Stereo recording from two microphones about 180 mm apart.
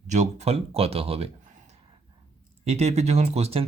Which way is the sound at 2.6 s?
35° right (ahead or behind).